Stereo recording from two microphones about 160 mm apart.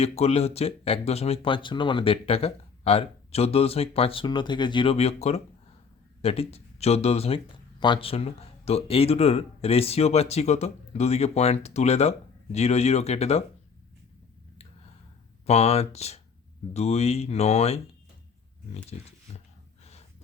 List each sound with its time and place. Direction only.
0.0 s speech: 40° left (ahead or behind)
15.4 s speech: 40° left (ahead or behind)